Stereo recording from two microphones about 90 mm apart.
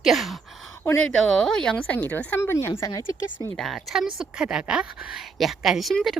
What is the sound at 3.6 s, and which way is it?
A woman's voice, centre (ahead or behind).